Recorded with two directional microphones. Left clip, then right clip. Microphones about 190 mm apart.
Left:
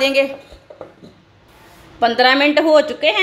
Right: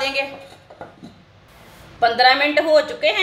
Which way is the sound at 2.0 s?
45° left (ahead or behind).